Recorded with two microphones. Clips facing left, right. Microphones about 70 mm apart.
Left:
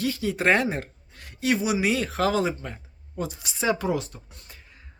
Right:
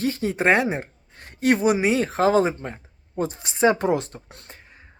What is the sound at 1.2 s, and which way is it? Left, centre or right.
Speech, right.